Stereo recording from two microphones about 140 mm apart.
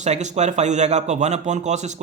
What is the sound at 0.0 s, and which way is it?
A man's voice, 55° right (ahead or behind).